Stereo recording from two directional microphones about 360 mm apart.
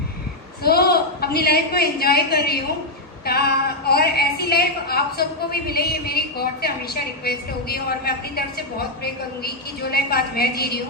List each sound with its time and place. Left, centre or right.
0.6 s a man's voice: left